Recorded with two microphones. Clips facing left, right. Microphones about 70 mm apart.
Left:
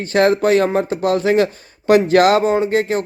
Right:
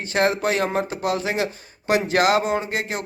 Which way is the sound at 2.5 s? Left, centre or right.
Left.